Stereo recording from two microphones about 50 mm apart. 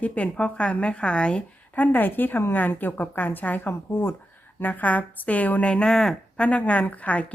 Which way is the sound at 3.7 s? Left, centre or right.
Left.